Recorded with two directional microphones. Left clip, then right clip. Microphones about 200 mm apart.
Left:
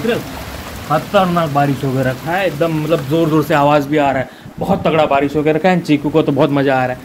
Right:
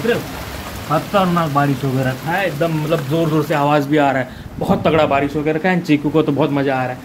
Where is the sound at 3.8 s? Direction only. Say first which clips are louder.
Left 1 dB; 10° right (ahead or behind).